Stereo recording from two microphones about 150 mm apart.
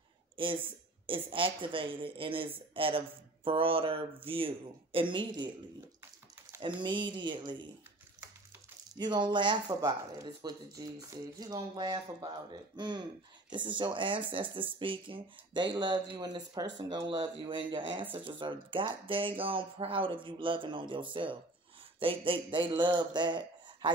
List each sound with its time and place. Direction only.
1.0 s speech: 35° right (ahead or behind)
6.6 s speech: 30° right (ahead or behind)
8.9 s speech: 30° right (ahead or behind)